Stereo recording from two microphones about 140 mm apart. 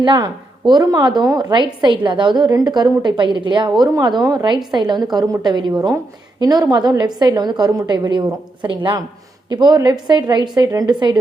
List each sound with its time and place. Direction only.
0.0 s a woman's voice: 30° right (ahead or behind)